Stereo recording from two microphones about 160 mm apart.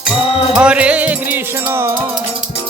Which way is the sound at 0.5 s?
5° right (ahead or behind).